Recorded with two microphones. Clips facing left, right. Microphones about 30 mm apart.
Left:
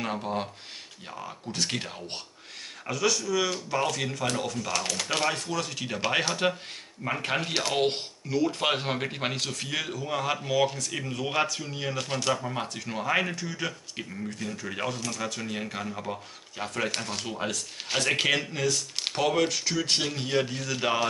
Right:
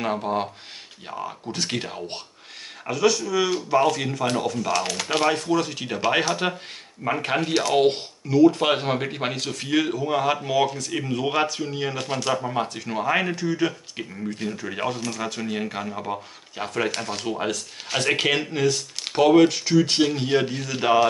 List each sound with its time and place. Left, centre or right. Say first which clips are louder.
0.0 s speech: right 6 dB; centre
17.9 s speech: right 3 dB; centre
18.2 s speech: right 4 dB; centre